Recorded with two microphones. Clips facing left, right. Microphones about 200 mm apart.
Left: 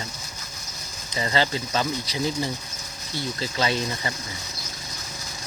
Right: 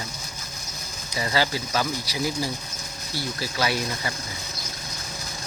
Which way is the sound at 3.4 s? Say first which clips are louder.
Left 1 dB; 20° left (ahead or behind).